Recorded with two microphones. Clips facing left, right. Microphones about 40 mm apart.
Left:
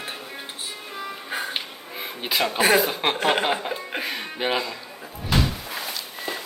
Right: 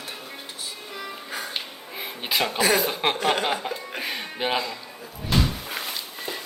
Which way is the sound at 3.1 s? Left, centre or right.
Left.